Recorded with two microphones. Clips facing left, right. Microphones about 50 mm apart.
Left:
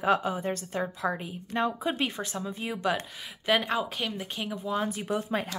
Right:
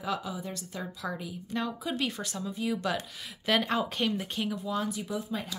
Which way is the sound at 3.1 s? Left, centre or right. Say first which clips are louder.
Left 2 dB; centre.